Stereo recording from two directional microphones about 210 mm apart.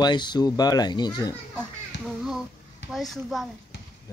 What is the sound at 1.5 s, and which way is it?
Music, centre (ahead or behind).